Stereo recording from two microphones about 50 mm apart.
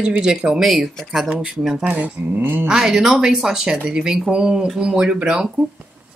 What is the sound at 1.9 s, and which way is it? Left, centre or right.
Speech, right.